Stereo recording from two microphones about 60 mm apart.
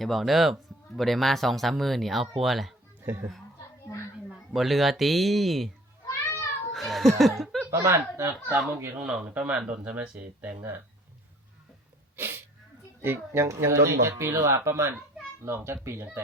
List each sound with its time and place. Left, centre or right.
0.0 s speech: centre
3.0 s speech: right
4.5 s speech: centre
6.7 s chuckle: centre
7.7 s speech: right
8.5 s speech: centre
9.0 s speech: right
12.1 s sneeze: right
13.0 s speech: right